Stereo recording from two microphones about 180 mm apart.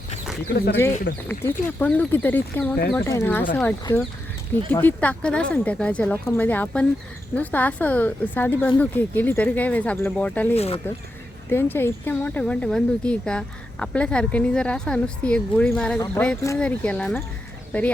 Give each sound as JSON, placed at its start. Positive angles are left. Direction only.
{"t": 0.4, "sound": "speech", "side_deg": 60}
{"t": 1.1, "sound": "speech", "side_deg": 75}
{"t": 1.5, "sound": "speech", "side_deg": 10}
{"t": 10.5, "sound": "speech", "side_deg": 35}
{"t": 11.4, "sound": "speech", "side_deg": 10}